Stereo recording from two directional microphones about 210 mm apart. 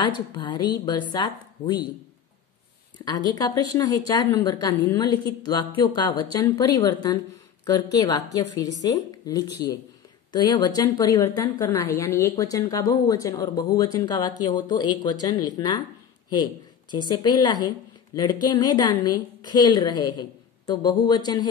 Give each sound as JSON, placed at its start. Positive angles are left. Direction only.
{"t": 0.0, "sound": "a woman's voice", "side_deg": 20}
{"t": 3.3, "sound": "a woman's voice", "side_deg": 20}
{"t": 17.2, "sound": "a woman's voice", "side_deg": 20}